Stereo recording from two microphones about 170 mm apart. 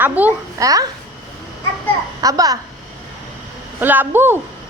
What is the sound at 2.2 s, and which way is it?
Speech, 20° right (ahead or behind).